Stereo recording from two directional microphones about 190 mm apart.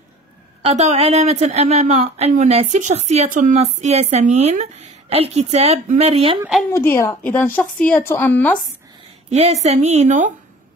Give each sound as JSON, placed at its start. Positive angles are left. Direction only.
{"t": 0.6, "sound": "speech", "side_deg": -35}
{"t": 6.7, "sound": "speech", "side_deg": 15}
{"t": 9.3, "sound": "speech", "side_deg": -35}